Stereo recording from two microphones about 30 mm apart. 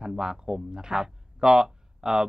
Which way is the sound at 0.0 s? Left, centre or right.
Right.